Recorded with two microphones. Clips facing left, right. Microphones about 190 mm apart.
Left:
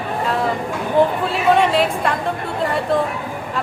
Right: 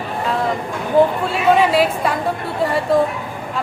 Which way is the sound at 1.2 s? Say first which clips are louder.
Right 1 dB; centre (ahead or behind).